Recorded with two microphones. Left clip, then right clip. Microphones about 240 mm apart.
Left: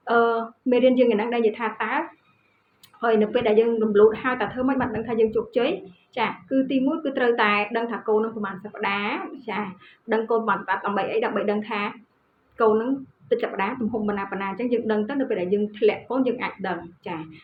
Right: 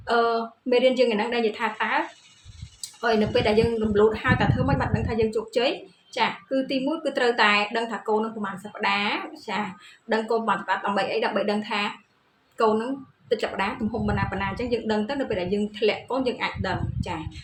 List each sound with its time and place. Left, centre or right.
0.0 s a woman's voice: right
3.0 s a woman's voice: right